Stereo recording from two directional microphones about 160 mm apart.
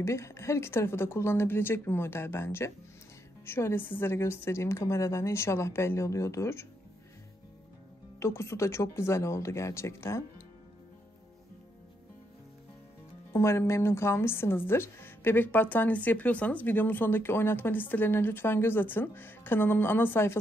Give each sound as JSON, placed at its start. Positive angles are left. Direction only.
{"t": 0.0, "sound": "a woman's voice", "side_deg": 15}
{"t": 8.2, "sound": "a woman's voice", "side_deg": 15}
{"t": 13.3, "sound": "a woman's voice", "side_deg": 15}